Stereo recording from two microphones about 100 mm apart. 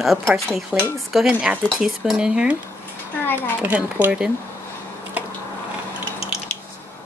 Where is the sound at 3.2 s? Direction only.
20° left (ahead or behind).